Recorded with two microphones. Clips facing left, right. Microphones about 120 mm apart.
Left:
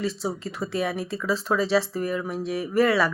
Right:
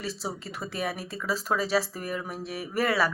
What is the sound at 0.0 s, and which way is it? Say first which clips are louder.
A woman's voice: left 6 dB; 35° right (ahead or behind).